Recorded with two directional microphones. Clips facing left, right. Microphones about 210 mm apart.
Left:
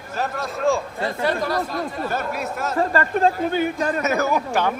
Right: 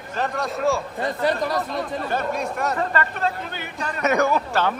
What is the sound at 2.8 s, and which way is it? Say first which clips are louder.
Speech: left 5 dB; 40° left (ahead or behind).